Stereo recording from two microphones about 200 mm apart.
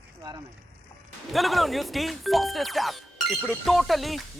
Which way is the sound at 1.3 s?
Centre (ahead or behind).